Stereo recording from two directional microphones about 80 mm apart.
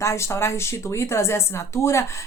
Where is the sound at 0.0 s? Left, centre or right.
Left.